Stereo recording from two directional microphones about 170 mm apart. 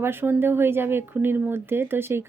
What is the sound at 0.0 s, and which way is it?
Speech, 15° right (ahead or behind).